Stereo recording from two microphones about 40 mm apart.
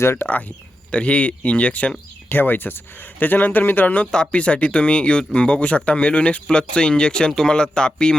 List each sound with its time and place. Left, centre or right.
0.3 s speech: left
2.3 s speech: left; by 8.1 s centre